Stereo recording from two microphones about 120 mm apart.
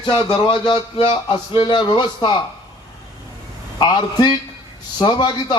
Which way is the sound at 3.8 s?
40° left (ahead or behind).